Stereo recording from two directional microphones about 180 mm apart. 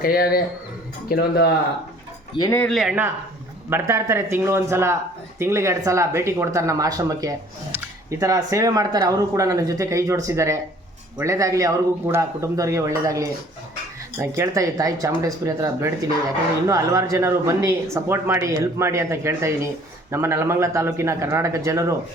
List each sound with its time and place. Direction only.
0.0 s a man's voice: 55° left (ahead or behind)
2.3 s speech: 20° left (ahead or behind)
2.6 s speech: centre (ahead or behind); by 21.9 s 15° right (ahead or behind)